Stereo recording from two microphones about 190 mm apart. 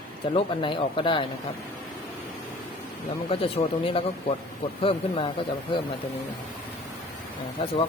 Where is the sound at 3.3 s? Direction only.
30° left (ahead or behind).